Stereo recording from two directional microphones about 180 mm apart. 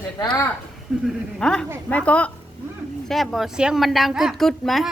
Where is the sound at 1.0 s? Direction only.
5° left (ahead or behind).